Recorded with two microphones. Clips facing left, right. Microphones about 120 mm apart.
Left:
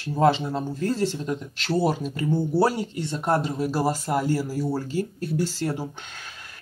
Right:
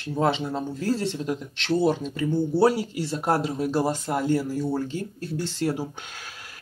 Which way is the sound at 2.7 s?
Centre (ahead or behind).